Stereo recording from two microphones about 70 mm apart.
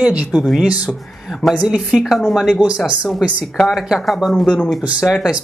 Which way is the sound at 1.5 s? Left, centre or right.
Centre.